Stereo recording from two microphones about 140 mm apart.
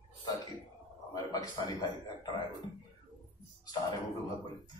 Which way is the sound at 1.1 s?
30° left (ahead or behind).